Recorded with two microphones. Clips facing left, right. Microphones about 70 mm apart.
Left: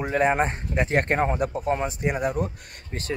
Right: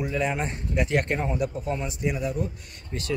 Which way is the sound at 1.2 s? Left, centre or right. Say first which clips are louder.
Left 4 dB; left.